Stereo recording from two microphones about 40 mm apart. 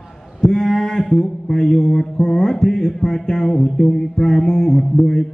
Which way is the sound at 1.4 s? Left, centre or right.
Centre.